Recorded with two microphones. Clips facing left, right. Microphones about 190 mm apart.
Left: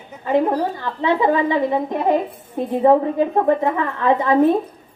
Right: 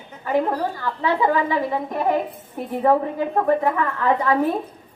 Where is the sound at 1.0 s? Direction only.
20° left (ahead or behind).